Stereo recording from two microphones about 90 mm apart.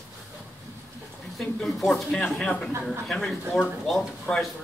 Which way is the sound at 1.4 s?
Centre (ahead or behind).